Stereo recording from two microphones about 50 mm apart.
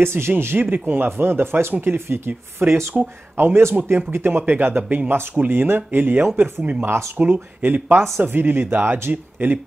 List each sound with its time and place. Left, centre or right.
0.0 s speech: right
2.6 s speech: right
6.6 s speech: right
6.9 s speech: right
7.2 s speech: right